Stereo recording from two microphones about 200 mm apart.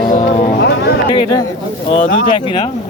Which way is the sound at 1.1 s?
20° left (ahead or behind).